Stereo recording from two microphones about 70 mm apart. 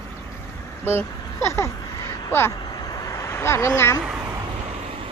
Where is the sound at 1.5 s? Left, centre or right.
Left.